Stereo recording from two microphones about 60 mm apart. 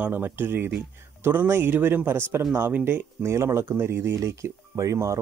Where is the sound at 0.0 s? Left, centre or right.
Right.